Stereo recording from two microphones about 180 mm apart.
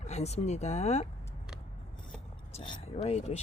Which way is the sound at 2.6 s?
35° left (ahead or behind).